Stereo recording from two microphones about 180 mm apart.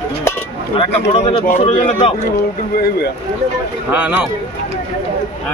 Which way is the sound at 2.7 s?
60° left (ahead or behind).